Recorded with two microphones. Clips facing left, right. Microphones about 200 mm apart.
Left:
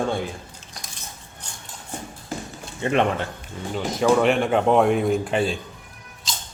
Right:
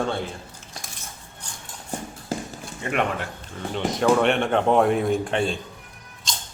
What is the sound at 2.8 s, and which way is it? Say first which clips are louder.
Speech: left 6 dB; 30° left (ahead or behind).